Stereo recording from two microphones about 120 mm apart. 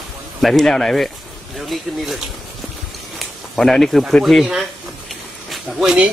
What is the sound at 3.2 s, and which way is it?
Speech, 5° left (ahead or behind).